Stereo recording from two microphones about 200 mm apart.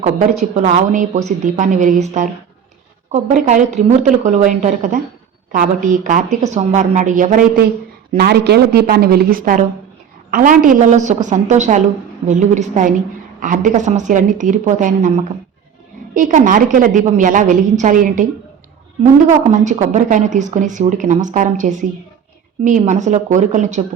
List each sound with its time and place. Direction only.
0.0 s a woman's voice: 35° right (ahead or behind)
3.4 s a woman's voice: 35° right (ahead or behind)
8.1 s a woman's voice: 55° right (ahead or behind)
19.6 s a woman's voice: 35° right (ahead or behind)